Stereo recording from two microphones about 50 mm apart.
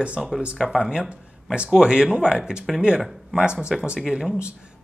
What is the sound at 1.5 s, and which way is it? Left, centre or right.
Speech, centre.